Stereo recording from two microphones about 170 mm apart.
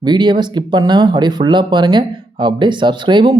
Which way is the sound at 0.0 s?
25° right (ahead or behind).